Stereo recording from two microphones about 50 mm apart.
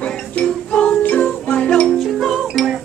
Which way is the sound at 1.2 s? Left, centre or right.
Centre.